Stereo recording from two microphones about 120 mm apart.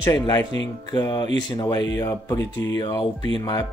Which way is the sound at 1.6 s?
30° left (ahead or behind).